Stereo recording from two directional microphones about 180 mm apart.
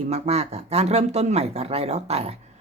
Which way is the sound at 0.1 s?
35° right (ahead or behind).